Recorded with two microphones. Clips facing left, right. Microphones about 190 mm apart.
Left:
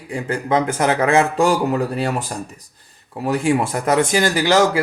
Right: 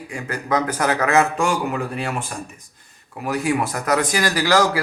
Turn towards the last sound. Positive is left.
turn(degrees=25)  # may be behind; listen again after turning